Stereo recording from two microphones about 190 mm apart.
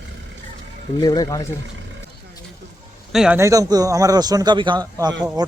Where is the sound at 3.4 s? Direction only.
15° right (ahead or behind).